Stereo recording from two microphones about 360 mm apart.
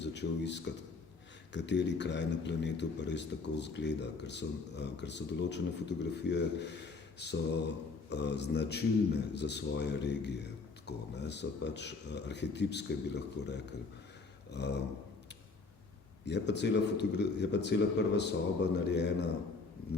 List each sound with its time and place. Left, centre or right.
0.0 s a man's voice: left
16.2 s a man's voice: left